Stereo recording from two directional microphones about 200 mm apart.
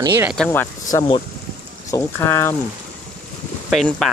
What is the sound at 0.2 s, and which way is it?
Speech, 5° right (ahead or behind).